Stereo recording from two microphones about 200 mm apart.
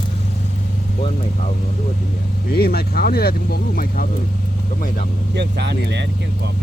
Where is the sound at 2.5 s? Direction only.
50° left (ahead or behind).